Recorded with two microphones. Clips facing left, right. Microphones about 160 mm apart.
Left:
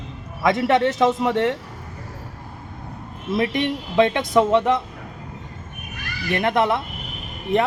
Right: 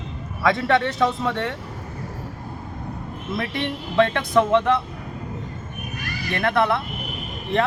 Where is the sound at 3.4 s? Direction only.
15° left (ahead or behind).